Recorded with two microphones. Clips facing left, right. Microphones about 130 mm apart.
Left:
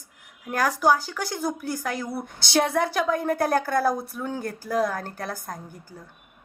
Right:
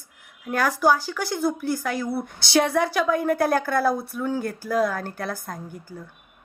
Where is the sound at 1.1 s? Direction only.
45° left (ahead or behind).